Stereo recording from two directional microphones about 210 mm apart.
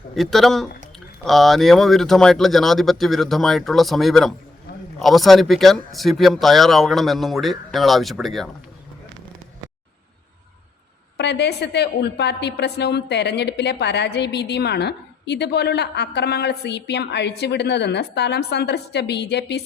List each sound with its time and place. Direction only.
0.2 s speech: centre (ahead or behind)
11.2 s a woman's voice: 50° left (ahead or behind)